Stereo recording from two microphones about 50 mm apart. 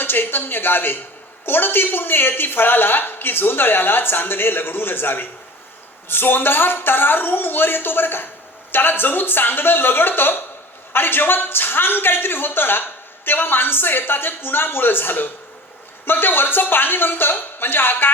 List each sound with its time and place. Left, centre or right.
0.0 s a man's voice: left